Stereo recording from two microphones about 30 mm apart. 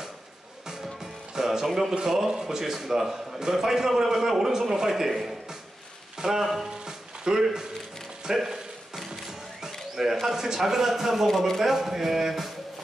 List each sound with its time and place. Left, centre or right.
1.3 s music: centre
1.7 s a man's voice: centre
2.6 s a man's voice: centre
6.1 s a sound: centre
6.4 s a man's voice: centre
9.6 s a sound: centre
10.2 s a man's voice: centre
11.2 s speech: centre
11.6 s a man's voice: centre